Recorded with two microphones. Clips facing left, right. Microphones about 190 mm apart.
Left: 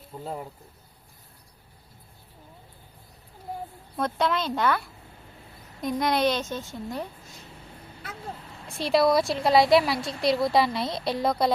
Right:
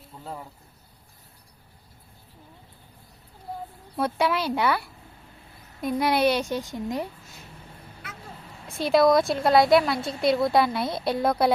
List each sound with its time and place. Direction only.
3.9 s a woman's voice: 10° right (ahead or behind)
8.6 s a woman's voice: centre (ahead or behind)